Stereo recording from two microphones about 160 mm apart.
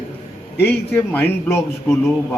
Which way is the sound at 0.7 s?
10° left (ahead or behind).